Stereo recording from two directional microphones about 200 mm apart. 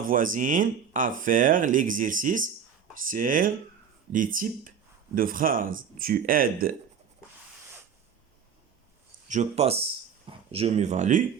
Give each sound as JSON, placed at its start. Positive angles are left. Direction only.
{"t": 0.0, "sound": "speech", "side_deg": -40}
{"t": 9.3, "sound": "speech", "side_deg": -35}